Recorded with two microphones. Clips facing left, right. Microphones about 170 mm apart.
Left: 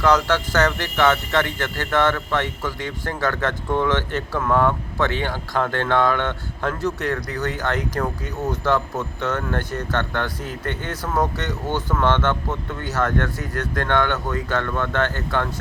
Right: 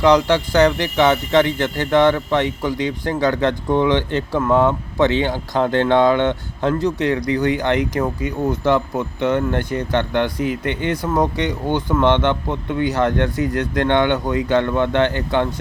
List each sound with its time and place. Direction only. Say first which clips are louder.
0.0 s a man's voice: right 4 dB; 15° right (ahead or behind)